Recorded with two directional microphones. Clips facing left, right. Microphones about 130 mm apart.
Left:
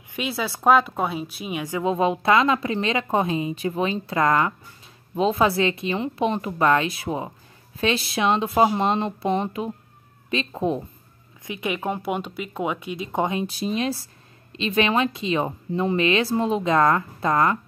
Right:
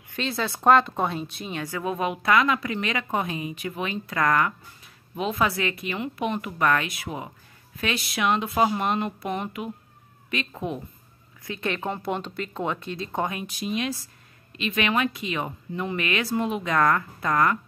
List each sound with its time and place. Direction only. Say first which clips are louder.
0.1 s a woman's voice: left 1 dB; 10° left (ahead or behind); by 10.8 s 30° left (ahead or behind)
11.4 s a woman's voice: left 2 dB; 15° left (ahead or behind)